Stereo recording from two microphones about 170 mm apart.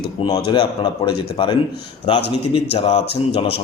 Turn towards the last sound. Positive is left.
turn(degrees=35)  # may be behind; listen again after turning